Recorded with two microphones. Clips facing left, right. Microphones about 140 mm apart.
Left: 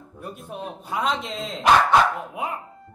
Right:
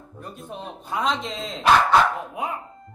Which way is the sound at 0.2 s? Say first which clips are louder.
Left 2 dB; 5° left (ahead or behind).